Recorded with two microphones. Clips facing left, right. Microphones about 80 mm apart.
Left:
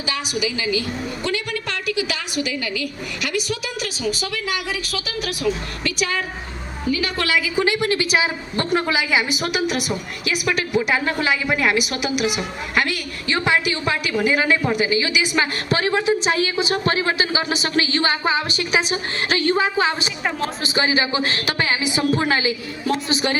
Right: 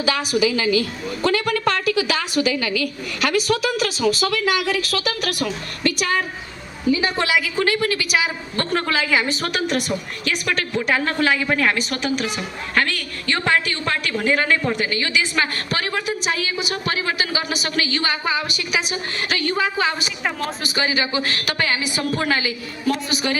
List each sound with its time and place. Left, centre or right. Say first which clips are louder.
0.4 s a woman's voice: right 4 dB; right
3.2 s a woman's voice: right 6 dB; right
6.9 s a woman's voice: right 2 dB; right
7.4 s a woman's voice: left 1 dB; centre
8.5 s a woman's voice: left 1 dB; centre